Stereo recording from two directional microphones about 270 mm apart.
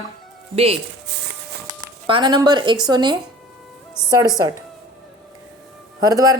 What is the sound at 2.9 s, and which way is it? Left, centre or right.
Speech, centre.